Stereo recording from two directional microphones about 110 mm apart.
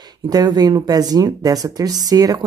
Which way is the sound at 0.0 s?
35° right (ahead or behind).